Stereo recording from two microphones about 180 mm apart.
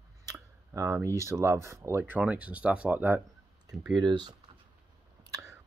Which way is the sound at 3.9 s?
25° right (ahead or behind).